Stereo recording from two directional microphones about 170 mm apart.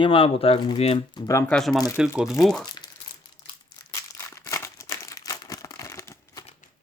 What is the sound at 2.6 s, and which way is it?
Speech, 25° left (ahead or behind).